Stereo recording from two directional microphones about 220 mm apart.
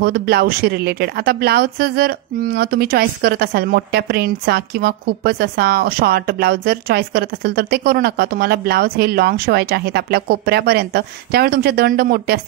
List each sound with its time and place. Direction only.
0.0 s speech: 45° right (ahead or behind)